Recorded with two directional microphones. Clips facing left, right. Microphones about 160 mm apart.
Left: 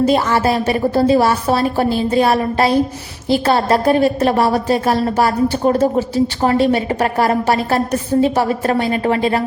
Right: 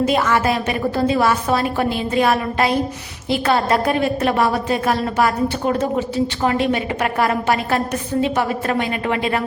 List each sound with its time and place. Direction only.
0.0 s a woman's voice: 35° left (ahead or behind)